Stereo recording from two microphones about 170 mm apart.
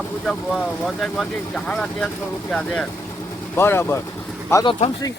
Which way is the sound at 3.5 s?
15° left (ahead or behind).